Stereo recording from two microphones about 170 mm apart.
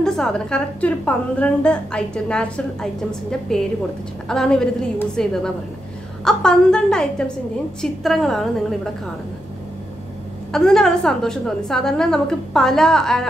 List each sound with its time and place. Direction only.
0.0 s a woman's voice: 5° left (ahead or behind)
10.5 s a woman's voice: 5° left (ahead or behind)